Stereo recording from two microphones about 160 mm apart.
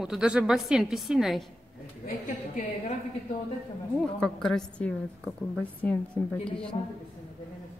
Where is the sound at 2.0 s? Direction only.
60° left (ahead or behind).